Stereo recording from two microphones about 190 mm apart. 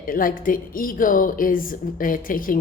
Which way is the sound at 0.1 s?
45° left (ahead or behind).